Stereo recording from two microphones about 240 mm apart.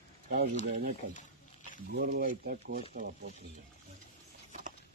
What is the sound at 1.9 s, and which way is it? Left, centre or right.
Speech, right.